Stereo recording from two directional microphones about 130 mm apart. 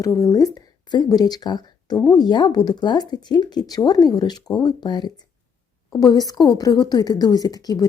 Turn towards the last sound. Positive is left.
turn(degrees=30)  # may be behind; listen again after turning